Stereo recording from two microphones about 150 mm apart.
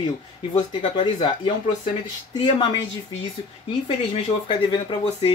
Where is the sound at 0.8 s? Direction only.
35° left (ahead or behind).